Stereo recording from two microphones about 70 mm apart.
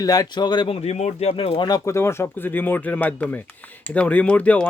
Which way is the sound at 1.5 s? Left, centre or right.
Left.